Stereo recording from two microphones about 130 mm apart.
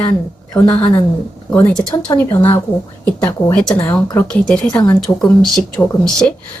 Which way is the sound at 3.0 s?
10° left (ahead or behind).